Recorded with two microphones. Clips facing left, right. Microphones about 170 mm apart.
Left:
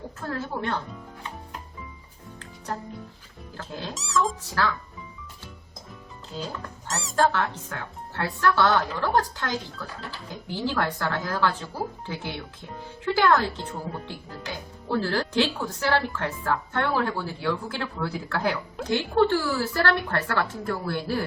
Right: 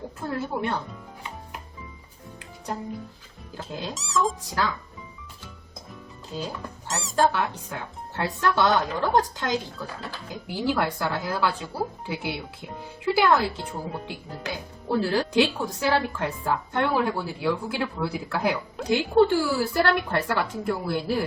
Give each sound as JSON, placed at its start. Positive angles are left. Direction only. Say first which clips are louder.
{"t": 0.2, "sound": "speech", "louder": "right 2 dB", "side_deg": -15}
{"t": 3.6, "sound": "speech", "louder": "right 2 dB", "side_deg": -10}
{"t": 3.9, "sound": "speech", "louder": "even", "side_deg": 0}
{"t": 4.6, "sound": "speech", "louder": "left 1 dB", "side_deg": -15}
{"t": 6.3, "sound": "speech", "louder": "right 1 dB", "side_deg": -15}
{"t": 6.8, "sound": "squeak", "louder": "right 1 dB", "side_deg": 0}
{"t": 7.2, "sound": "speech", "louder": "even", "side_deg": -15}